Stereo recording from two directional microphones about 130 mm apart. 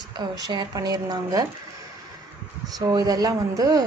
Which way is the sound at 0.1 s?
30° right (ahead or behind).